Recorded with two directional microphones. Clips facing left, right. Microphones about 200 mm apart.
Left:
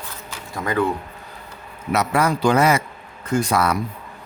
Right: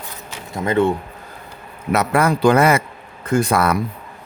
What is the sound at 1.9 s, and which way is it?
A man's voice, 55° right (ahead or behind).